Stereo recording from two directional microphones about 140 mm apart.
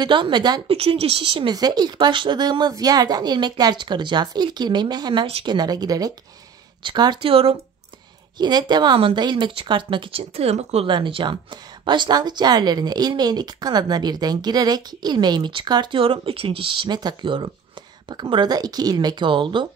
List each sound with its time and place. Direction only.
0.0 s speech: 35° right (ahead or behind)
8.4 s speech: 30° right (ahead or behind); by 10.9 s 45° right (ahead or behind)
10.9 s speech: 35° right (ahead or behind)